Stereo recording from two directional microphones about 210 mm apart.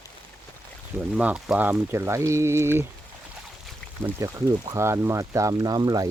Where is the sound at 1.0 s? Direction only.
5° right (ahead or behind).